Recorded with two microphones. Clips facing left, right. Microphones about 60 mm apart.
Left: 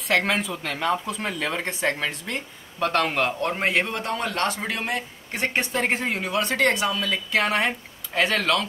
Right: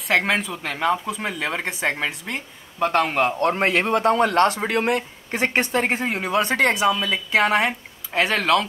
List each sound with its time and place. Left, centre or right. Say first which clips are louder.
0.1 s speech: right 2 dB; centre
3.6 s speech: right 6 dB; right
5.8 s speech: even; centre
6.0 s speech: right 2 dB; right
6.3 s speech: right 3 dB; centre